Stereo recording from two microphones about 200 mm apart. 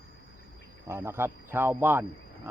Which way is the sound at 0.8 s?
10° right (ahead or behind).